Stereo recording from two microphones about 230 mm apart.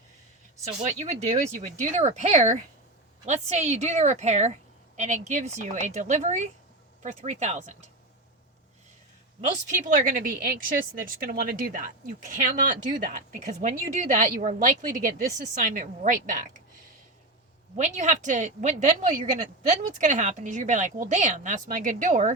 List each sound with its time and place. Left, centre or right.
0.9 s a woman's voice: right
9.6 s speech: right
17.7 s speech: right